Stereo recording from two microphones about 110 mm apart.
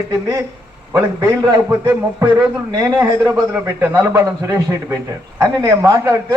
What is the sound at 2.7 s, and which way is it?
Speech, 35° right (ahead or behind).